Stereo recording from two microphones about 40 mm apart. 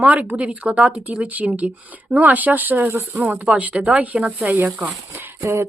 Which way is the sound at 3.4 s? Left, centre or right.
Right.